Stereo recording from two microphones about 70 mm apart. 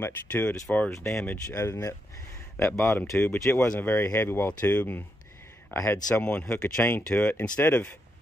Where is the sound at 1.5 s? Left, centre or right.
Left.